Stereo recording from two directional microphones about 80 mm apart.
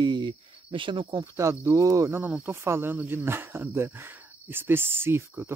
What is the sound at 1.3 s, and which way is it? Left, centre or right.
Cricket, right.